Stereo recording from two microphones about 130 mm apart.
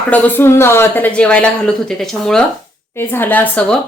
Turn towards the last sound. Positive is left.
turn(degrees=10)  # may be behind; listen again after turning